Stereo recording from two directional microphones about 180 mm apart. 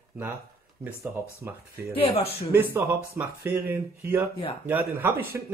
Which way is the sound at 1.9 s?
30° left (ahead or behind).